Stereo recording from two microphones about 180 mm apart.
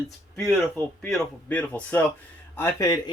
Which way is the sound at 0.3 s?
Centre (ahead or behind).